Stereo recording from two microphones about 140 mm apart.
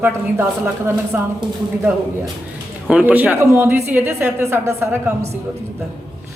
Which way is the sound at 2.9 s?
10° right (ahead or behind).